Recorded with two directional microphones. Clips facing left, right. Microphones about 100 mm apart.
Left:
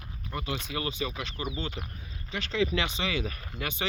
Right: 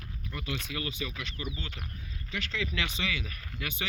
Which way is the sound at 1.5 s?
25° left (ahead or behind).